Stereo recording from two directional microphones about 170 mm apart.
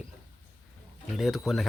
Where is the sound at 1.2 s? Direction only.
Centre (ahead or behind).